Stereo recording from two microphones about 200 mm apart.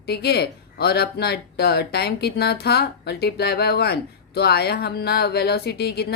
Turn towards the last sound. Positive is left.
turn(degrees=55)  # may be behind; listen again after turning